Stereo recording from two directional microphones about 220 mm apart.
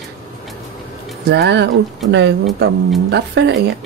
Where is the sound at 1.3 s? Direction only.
50° right (ahead or behind).